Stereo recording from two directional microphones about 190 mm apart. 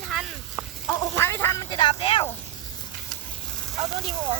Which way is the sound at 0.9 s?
15° left (ahead or behind).